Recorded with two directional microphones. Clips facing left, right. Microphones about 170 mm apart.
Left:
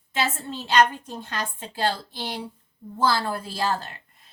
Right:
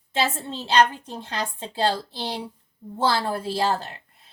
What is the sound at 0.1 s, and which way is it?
A woman's voice, 30° right (ahead or behind).